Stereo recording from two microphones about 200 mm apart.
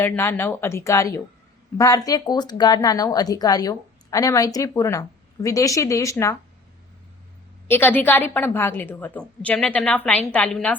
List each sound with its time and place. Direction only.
0.0 s speech: 10° left (ahead or behind)
7.7 s speech: 10° left (ahead or behind)